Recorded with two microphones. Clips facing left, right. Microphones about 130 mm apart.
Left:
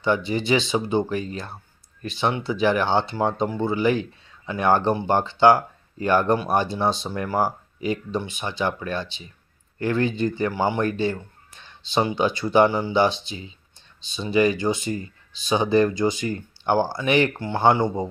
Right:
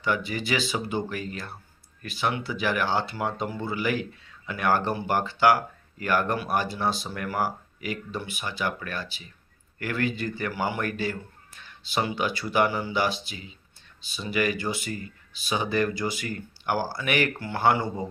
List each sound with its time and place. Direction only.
0.0 s speech: 25° left (ahead or behind)